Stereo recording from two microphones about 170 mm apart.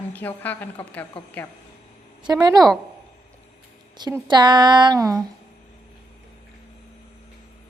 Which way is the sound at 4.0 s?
25° right (ahead or behind).